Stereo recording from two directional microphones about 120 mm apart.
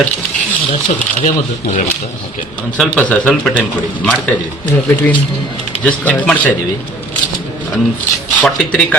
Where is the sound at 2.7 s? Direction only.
Centre (ahead or behind).